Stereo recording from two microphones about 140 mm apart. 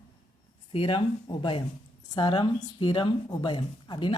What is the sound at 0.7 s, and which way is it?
Speech, 40° left (ahead or behind).